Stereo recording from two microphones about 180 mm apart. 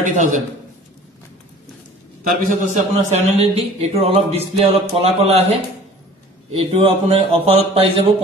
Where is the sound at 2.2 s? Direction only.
50° right (ahead or behind).